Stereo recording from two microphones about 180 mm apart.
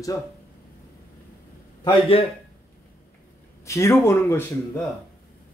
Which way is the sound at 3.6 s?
15° left (ahead or behind).